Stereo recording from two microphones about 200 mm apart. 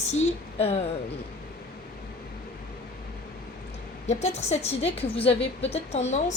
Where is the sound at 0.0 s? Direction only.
35° left (ahead or behind).